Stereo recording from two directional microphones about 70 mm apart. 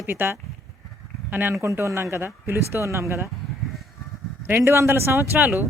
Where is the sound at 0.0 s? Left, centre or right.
Right.